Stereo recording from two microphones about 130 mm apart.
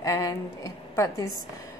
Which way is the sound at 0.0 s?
25° left (ahead or behind).